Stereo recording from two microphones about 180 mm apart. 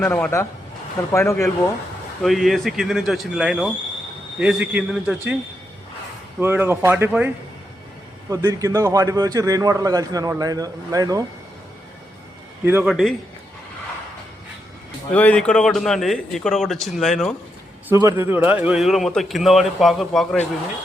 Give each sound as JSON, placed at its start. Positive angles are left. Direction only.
{"t": 0.0, "sound": "speech", "side_deg": 10}
{"t": 2.2, "sound": "a man's voice", "side_deg": 0}
{"t": 6.4, "sound": "a man's voice", "side_deg": -10}
{"t": 8.3, "sound": "a man's voice", "side_deg": -20}
{"t": 12.6, "sound": "a man's voice", "side_deg": -10}
{"t": 12.9, "sound": "a man's voice", "side_deg": 0}
{"t": 15.1, "sound": "a man's voice", "side_deg": 10}
{"t": 17.8, "sound": "a man's voice", "side_deg": -15}